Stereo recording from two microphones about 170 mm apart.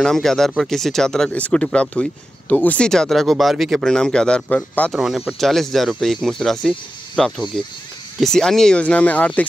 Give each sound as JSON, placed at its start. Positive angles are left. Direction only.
{"t": 0.0, "sound": "speech", "side_deg": 5}